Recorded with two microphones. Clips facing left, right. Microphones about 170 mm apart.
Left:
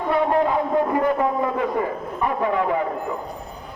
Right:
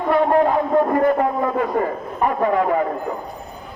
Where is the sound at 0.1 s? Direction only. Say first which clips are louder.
Right 4 dB; 50° right (ahead or behind).